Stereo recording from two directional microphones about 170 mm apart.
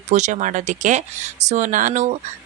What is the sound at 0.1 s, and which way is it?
Speech, 45° right (ahead or behind).